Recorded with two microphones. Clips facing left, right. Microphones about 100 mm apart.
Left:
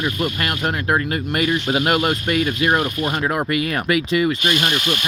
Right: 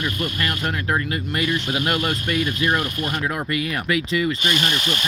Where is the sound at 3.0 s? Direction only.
30° left (ahead or behind).